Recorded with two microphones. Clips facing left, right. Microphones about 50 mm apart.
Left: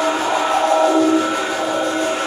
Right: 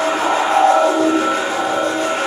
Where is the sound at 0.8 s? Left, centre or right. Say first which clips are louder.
Even; centre.